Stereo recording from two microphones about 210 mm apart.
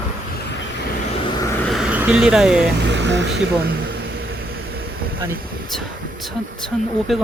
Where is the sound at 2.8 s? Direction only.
55° right (ahead or behind).